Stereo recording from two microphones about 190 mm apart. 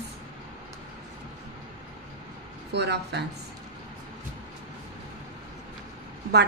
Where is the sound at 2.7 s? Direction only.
60° right (ahead or behind).